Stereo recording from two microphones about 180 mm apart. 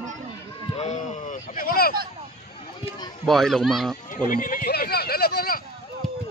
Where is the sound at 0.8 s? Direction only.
45° left (ahead or behind).